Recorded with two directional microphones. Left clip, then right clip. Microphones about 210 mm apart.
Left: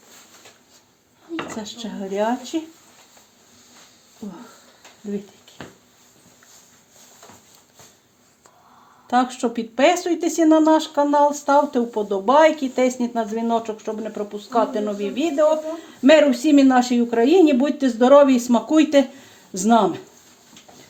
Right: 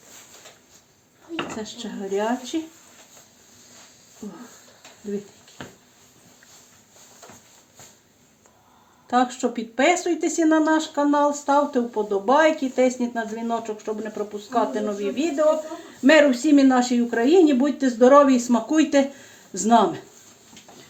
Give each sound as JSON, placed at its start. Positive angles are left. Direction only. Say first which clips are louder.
{"t": 1.5, "sound": "speech", "louder": "left 1 dB", "side_deg": 25}
{"t": 9.0, "sound": "speech", "louder": "left 1 dB", "side_deg": 30}